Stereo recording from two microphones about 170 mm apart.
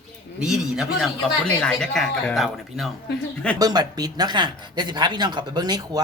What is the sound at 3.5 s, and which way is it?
Speech, 25° right (ahead or behind).